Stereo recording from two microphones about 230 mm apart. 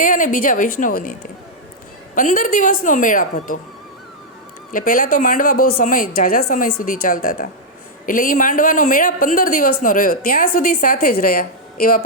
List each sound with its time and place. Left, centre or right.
0.0 s a woman's voice: left
2.1 s a woman's voice: left
4.7 s a woman's voice: left